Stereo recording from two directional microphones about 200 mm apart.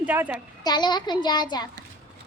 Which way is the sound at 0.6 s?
20° left (ahead or behind).